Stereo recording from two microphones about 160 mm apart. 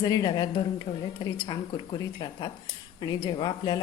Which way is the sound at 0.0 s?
25° left (ahead or behind).